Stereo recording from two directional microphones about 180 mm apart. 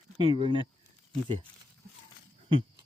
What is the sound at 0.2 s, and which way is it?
Speech, 25° right (ahead or behind).